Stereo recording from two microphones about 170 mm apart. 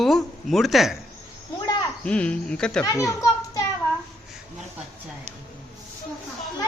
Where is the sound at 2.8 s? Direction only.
20° left (ahead or behind).